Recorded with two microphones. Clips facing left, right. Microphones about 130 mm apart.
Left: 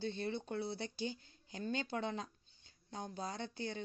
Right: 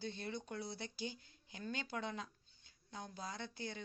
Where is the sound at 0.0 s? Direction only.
30° left (ahead or behind).